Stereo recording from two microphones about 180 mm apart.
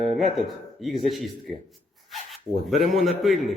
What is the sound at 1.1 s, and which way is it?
Speech, centre (ahead or behind).